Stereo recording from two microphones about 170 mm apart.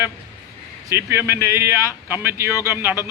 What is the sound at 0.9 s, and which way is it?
Speech, 15° right (ahead or behind).